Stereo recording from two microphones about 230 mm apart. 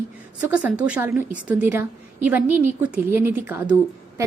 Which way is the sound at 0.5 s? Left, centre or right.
Centre.